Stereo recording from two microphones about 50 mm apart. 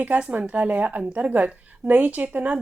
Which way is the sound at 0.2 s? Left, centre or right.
Right.